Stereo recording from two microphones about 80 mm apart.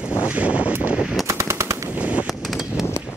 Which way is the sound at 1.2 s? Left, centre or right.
Right.